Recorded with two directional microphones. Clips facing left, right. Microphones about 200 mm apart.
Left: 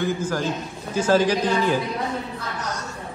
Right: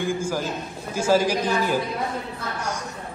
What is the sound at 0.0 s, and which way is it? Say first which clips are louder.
A man's voice: left 1 dB; 10° right (ahead or behind).